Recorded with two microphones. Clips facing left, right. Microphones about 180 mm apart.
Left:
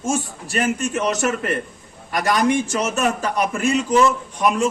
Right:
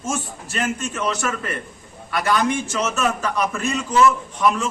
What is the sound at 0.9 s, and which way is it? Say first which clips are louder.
Speech: left 4 dB; 20° left (ahead or behind).